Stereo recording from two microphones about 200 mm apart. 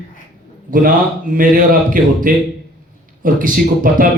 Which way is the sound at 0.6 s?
45° right (ahead or behind).